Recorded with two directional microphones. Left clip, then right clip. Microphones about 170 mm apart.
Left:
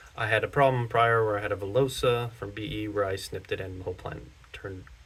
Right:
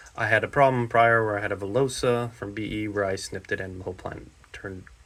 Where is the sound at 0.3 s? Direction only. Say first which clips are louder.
Right 3 dB; 20° right (ahead or behind).